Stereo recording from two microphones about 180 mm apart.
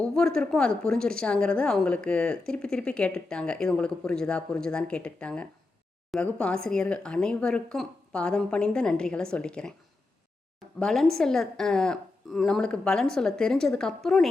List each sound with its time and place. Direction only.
0.0 s speech: 5° left (ahead or behind)
10.8 s speech: centre (ahead or behind)